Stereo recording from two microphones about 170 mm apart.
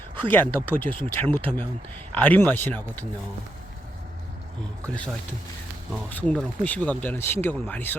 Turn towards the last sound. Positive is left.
turn(degrees=10)  # may be behind; listen again after turning